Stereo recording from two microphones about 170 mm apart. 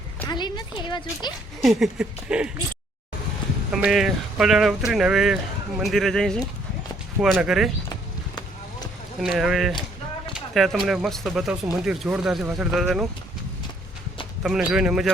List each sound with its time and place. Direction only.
0.3 s a woman's voice: 25° left (ahead or behind)
1.6 s speech: 5° right (ahead or behind)
3.7 s speech: 5° right (ahead or behind)
9.2 s speech: centre (ahead or behind)
14.4 s speech: 5° right (ahead or behind)